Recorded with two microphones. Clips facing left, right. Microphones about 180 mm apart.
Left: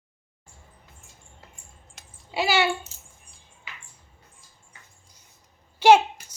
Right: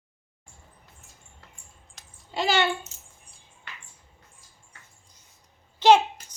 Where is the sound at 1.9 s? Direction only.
10° left (ahead or behind).